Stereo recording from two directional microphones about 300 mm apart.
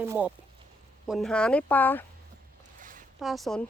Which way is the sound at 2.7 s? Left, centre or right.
Right.